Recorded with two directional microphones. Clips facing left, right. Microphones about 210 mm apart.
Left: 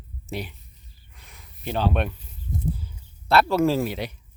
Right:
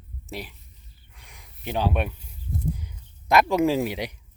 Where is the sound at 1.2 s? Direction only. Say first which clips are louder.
Left 2 dB; 15° right (ahead or behind).